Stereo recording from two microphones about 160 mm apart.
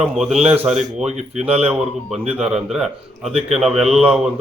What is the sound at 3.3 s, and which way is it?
Speech, 40° right (ahead or behind).